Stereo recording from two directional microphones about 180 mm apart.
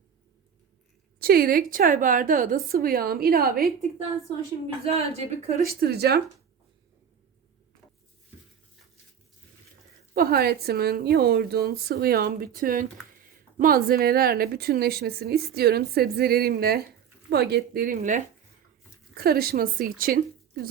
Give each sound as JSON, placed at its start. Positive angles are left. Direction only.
{"t": 1.2, "sound": "a woman's voice", "side_deg": -55}
{"t": 4.9, "sound": "speech", "side_deg": -35}
{"t": 5.8, "sound": "speech", "side_deg": -60}
{"t": 10.2, "sound": "speech", "side_deg": -55}
{"t": 19.1, "sound": "a woman's voice", "side_deg": -55}